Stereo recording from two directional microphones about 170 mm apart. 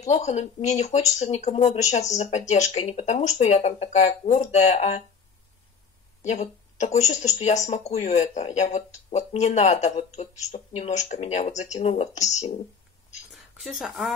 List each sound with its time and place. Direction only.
0.0 s speech: 40° left (ahead or behind)
6.3 s speech: 45° left (ahead or behind)
13.3 s speech: centre (ahead or behind)